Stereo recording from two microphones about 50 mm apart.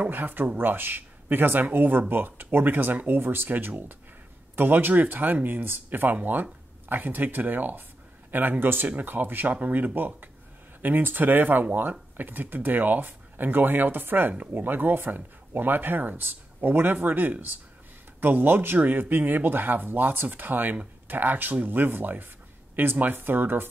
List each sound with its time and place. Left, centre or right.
0.1 s speech: right